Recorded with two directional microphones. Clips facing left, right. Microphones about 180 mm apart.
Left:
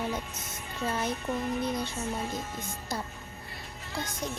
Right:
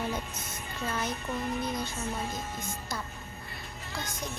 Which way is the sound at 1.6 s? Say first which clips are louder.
Left 2 dB; 30° left (ahead or behind).